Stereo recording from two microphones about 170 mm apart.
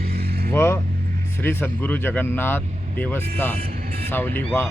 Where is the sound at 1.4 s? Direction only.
10° left (ahead or behind).